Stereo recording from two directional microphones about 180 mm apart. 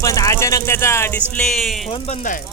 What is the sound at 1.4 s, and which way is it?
Speech, centre (ahead or behind).